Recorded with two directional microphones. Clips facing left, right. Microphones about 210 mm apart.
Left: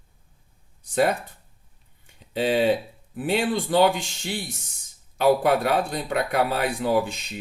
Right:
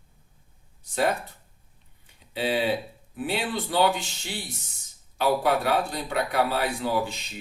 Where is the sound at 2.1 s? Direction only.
45° left (ahead or behind).